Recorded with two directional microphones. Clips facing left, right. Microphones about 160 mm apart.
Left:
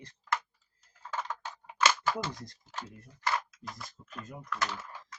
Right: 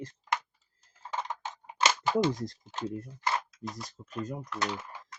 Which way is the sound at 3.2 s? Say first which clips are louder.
Even; 20° right (ahead or behind).